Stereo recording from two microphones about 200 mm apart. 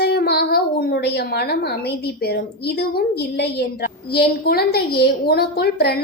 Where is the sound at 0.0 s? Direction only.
55° left (ahead or behind).